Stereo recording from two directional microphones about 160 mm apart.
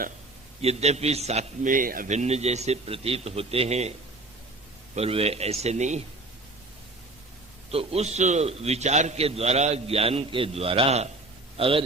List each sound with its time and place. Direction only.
0.6 s a man's voice: 40° right (ahead or behind)
1.7 s speech: 60° right (ahead or behind); by 3.9 s 40° right (ahead or behind)
4.9 s a man's voice: 40° right (ahead or behind)
7.7 s a man's voice: 40° right (ahead or behind)